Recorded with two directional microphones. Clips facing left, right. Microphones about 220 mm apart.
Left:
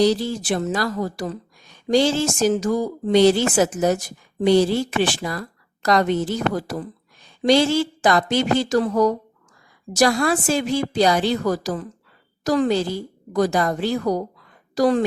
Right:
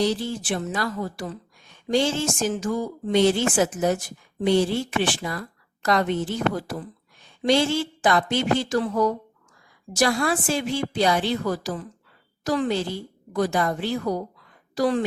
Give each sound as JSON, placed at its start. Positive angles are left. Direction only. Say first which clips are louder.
{"t": 0.0, "sound": "speech", "louder": "left 5 dB", "side_deg": 40}